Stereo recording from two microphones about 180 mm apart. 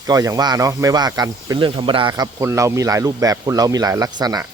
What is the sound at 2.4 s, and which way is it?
Speech, 15° right (ahead or behind).